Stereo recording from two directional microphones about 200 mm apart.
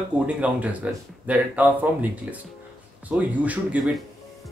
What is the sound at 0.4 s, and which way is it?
Speech, 5° right (ahead or behind).